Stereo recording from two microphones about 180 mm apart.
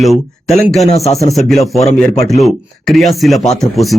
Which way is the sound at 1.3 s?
Centre (ahead or behind).